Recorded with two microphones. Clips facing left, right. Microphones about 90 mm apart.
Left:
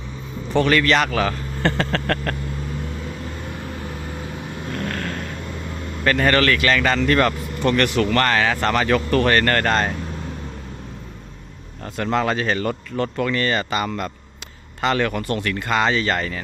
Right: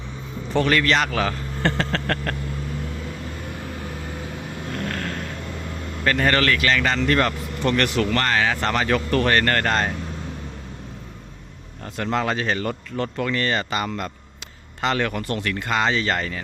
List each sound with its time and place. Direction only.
0.6 s a man's voice: 90° left
1.6 s a sound: 50° left (ahead or behind)
6.1 s speech: 65° left (ahead or behind); by 7.3 s 90° left
7.8 s speech: 70° left (ahead or behind)
11.9 s speech: 70° left (ahead or behind)
14.8 s speech: 60° left (ahead or behind)